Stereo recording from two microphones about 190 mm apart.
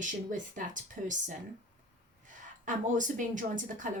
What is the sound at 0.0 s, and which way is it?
Speech, 45° right (ahead or behind).